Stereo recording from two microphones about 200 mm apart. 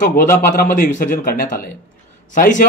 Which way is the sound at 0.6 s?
40° left (ahead or behind).